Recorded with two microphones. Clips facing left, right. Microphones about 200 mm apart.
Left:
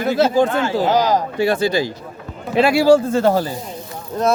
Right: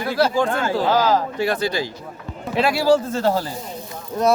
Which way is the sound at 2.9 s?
50° left (ahead or behind).